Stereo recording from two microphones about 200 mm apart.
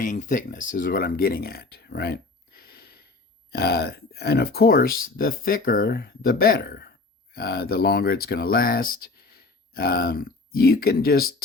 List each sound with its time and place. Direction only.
0.0 s speech: 40° left (ahead or behind)